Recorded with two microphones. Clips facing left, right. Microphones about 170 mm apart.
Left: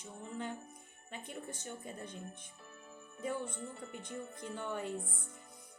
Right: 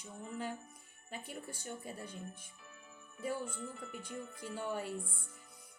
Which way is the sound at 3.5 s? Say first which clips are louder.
Even; 30° left (ahead or behind).